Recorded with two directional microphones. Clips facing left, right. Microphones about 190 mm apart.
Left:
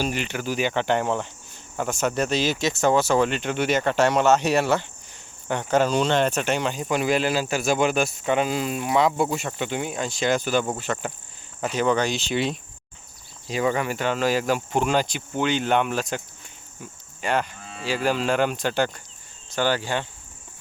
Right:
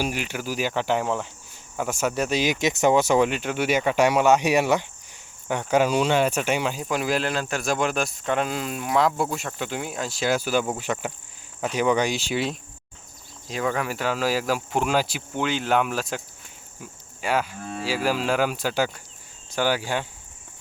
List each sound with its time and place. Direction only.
0.0 s speech: 10° right (ahead or behind)
17.6 s cattle: 50° right (ahead or behind)
17.8 s speech: 5° right (ahead or behind)